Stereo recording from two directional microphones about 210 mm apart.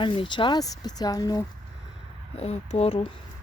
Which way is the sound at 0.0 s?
25° left (ahead or behind).